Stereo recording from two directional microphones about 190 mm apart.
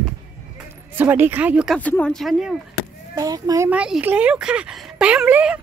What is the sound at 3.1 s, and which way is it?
Speech, 20° right (ahead or behind).